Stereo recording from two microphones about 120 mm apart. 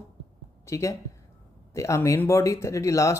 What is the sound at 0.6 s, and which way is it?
A man's voice, 25° left (ahead or behind).